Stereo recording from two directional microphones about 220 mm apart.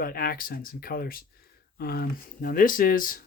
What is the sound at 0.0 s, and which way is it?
Speech, 40° left (ahead or behind).